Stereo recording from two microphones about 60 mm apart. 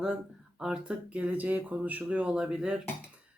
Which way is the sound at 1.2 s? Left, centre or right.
Right.